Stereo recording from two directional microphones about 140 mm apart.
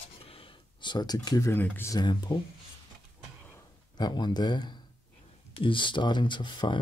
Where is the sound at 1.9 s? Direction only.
30° left (ahead or behind).